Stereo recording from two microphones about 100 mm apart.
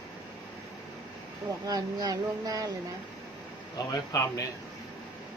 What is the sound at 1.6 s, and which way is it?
Speech, 40° right (ahead or behind).